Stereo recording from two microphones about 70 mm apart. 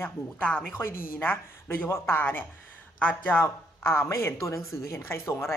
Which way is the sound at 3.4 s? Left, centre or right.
Left.